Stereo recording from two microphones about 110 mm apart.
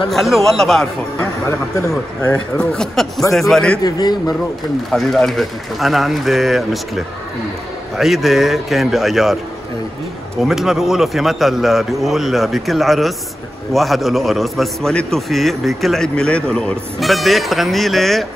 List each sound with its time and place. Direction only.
0.1 s a man's voice: centre (ahead or behind)
2.2 s a man's voice: 10° left (ahead or behind)
3.8 s a man's voice: 35° left (ahead or behind)
4.9 s a man's voice: centre (ahead or behind)
10.4 s a man's voice: 5° right (ahead or behind)